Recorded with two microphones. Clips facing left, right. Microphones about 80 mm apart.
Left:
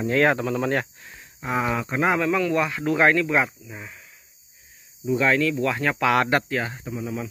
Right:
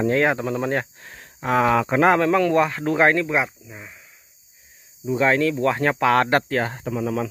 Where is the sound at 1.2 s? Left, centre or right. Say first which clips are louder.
Right 6 dB; right.